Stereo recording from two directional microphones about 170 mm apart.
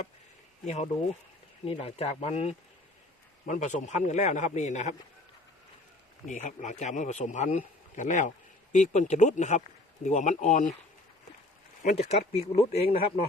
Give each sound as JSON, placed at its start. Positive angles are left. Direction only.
{"t": 0.6, "sound": "a man's voice", "side_deg": 40}
{"t": 6.2, "sound": "a man's voice", "side_deg": 45}
{"t": 11.8, "sound": "speech", "side_deg": 45}